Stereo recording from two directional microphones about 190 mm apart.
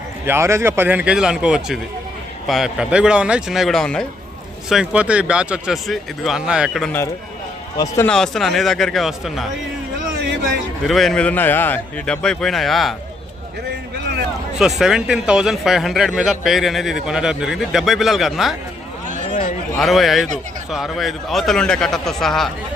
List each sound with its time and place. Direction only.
0.3 s a man's voice: 15° right (ahead or behind)
7.8 s speech: 15° left (ahead or behind)
8.1 s speech: centre (ahead or behind)
10.8 s speech: centre (ahead or behind)
14.8 s speech: 5° right (ahead or behind)
19.3 s a sound: 40° left (ahead or behind)
19.8 s speech: centre (ahead or behind)